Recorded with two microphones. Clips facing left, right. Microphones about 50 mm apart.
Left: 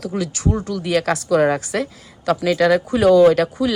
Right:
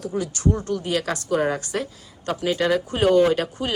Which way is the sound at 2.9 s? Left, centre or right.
Left.